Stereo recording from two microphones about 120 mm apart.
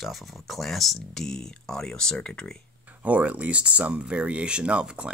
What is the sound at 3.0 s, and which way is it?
Speech, 10° right (ahead or behind).